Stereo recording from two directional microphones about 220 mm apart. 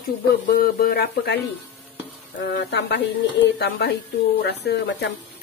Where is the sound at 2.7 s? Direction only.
50° left (ahead or behind).